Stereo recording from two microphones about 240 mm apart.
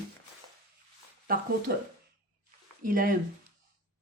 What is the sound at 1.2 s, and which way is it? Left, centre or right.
Speech, right.